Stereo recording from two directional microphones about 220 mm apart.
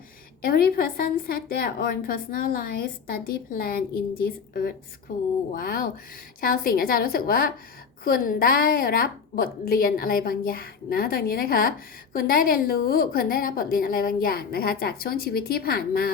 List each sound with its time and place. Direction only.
0.4 s a woman's voice: 45° left (ahead or behind)